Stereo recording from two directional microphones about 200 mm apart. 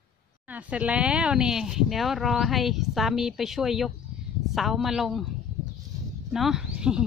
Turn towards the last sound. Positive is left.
turn(degrees=-5)  # may be behind; listen again after turning